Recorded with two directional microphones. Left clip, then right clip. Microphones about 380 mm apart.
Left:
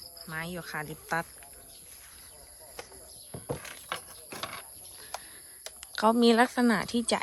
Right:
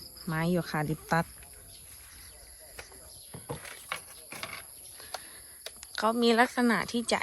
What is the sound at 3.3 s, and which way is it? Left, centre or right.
Horse, centre.